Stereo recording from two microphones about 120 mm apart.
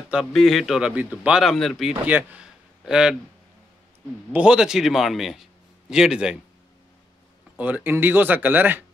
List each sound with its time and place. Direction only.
0.1 s a man's voice: centre (ahead or behind)
2.0 s a man's voice: 15° right (ahead or behind)
4.3 s a man's voice: 10° right (ahead or behind)
7.5 s speech: 15° right (ahead or behind)